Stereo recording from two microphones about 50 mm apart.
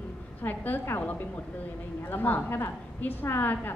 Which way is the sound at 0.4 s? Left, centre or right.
Left.